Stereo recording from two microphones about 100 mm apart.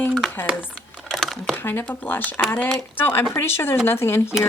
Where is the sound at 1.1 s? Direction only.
Centre (ahead or behind).